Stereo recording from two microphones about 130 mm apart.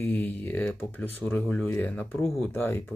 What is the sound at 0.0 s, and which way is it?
Speech, 15° left (ahead or behind).